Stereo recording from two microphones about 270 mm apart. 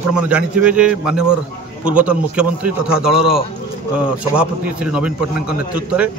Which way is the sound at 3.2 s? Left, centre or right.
Right.